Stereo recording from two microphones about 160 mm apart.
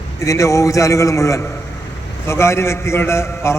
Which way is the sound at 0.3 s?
20° left (ahead or behind).